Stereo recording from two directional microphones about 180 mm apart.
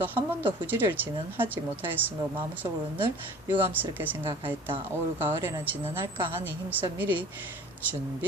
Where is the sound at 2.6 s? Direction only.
20° right (ahead or behind).